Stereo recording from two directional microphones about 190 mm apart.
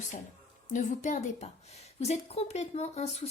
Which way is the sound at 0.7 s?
40° left (ahead or behind).